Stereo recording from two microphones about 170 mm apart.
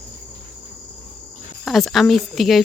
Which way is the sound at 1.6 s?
Centre (ahead or behind).